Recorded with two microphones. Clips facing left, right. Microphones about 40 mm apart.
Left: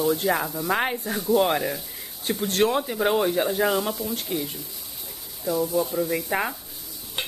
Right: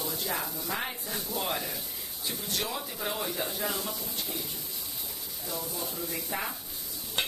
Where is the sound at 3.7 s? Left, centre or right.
Left.